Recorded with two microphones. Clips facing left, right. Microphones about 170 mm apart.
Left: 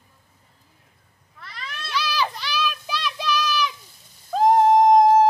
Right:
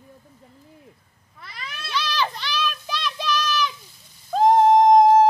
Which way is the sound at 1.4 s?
5° right (ahead or behind).